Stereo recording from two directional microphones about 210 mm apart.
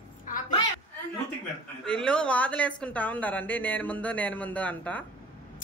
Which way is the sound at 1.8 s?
5° left (ahead or behind).